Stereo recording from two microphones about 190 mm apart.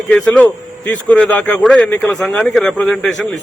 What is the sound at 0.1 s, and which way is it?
A man's voice, 10° left (ahead or behind).